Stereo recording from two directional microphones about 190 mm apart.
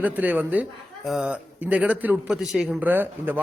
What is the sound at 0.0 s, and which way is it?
A man's voice, 10° right (ahead or behind).